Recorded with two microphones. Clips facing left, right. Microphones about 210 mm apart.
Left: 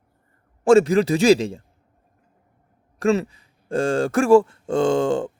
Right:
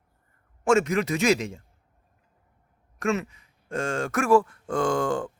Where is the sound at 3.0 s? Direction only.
30° left (ahead or behind).